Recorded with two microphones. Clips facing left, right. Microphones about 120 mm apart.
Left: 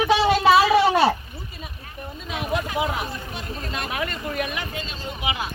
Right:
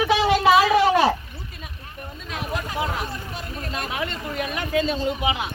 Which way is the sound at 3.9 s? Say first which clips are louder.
Left 3 dB; 25° right (ahead or behind).